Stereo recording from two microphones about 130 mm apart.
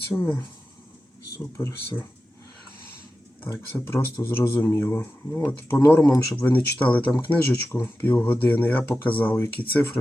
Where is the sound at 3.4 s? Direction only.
15° left (ahead or behind).